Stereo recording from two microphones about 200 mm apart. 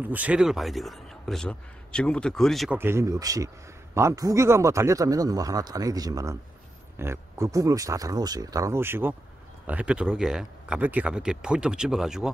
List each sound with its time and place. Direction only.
0.0 s a man's voice: 10° right (ahead or behind)
2.8 s a man's voice: 15° right (ahead or behind)